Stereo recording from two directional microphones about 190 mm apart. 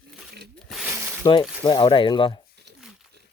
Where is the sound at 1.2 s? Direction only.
15° left (ahead or behind).